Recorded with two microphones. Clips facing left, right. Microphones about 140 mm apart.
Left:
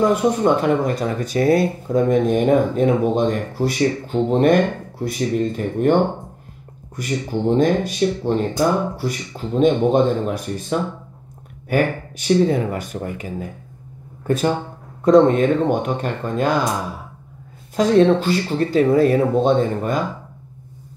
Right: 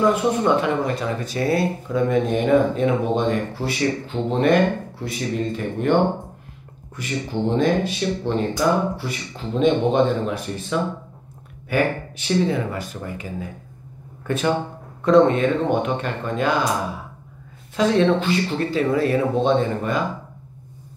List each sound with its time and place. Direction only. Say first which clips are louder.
0.1 s speech: left 2 dB; 45° left (ahead or behind)
7.0 s speech: left 2 dB; 45° left (ahead or behind)
14.2 s speech: left 2 dB; 40° left (ahead or behind)
17.7 s speech: left 4 dB; 40° left (ahead or behind)